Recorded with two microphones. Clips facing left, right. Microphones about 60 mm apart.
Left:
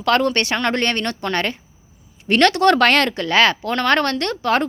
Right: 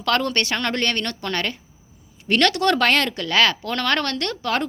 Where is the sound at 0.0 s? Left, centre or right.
Left.